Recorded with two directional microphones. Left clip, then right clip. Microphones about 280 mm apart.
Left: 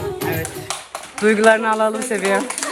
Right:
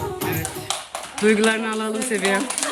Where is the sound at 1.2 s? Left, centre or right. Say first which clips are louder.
Left 5 dB; centre.